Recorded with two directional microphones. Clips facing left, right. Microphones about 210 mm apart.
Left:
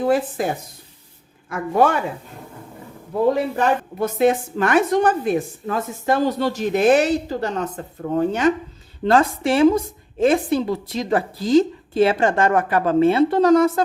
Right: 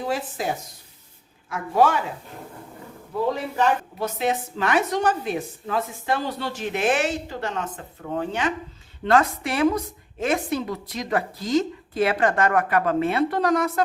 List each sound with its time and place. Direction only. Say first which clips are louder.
0.0 s a woman's voice: left 7 dB; 55° left (ahead or behind)
3.3 s a woman's voice: left 3 dB; 50° left (ahead or behind)
9.0 s a woman's voice: left 4 dB; 30° left (ahead or behind)